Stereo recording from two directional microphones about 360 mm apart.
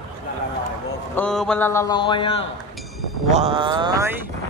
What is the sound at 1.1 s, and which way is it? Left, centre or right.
Speech, centre.